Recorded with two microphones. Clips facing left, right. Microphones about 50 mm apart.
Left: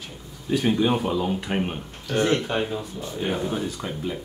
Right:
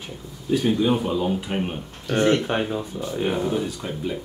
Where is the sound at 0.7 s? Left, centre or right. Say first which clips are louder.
Left 1 dB; centre.